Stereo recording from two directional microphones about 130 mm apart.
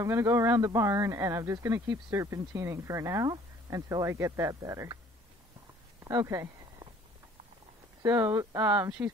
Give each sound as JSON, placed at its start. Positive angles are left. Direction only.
{"t": 0.0, "sound": "speech", "side_deg": -20}
{"t": 6.0, "sound": "a sound", "side_deg": -25}
{"t": 8.0, "sound": "speech", "side_deg": -20}